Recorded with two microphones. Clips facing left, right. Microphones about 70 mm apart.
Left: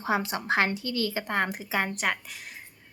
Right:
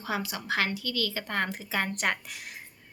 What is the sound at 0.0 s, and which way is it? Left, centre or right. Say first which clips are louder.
Speech: left 5 dB; left.